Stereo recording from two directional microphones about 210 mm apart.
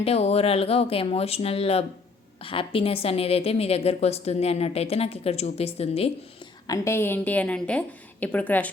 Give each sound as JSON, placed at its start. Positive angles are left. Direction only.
{"t": 0.0, "sound": "a woman's voice", "side_deg": 30}
{"t": 6.7, "sound": "a woman's voice", "side_deg": 10}